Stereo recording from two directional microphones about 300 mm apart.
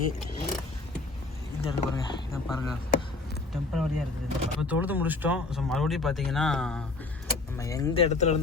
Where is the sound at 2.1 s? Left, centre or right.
Centre.